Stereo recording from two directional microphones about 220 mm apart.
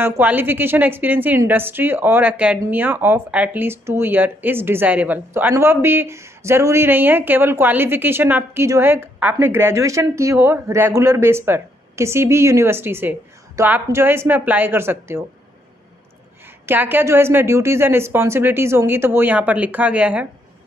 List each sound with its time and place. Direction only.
0.0 s a woman's voice: 10° right (ahead or behind)
16.6 s a woman's voice: 10° right (ahead or behind)